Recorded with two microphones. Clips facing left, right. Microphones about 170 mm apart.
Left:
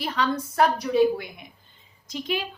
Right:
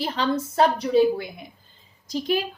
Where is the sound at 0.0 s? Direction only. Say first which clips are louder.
Right 2 dB; 30° right (ahead or behind).